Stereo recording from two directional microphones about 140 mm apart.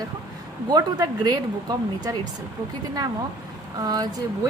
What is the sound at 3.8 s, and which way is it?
Speech, 25° right (ahead or behind).